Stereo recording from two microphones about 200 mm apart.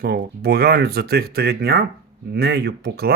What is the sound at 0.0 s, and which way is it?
Speech, 50° right (ahead or behind).